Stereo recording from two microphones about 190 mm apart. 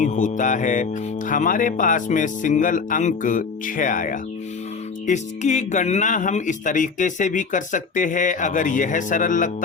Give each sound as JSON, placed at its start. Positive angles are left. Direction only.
{"t": 0.0, "sound": "speech", "side_deg": 40}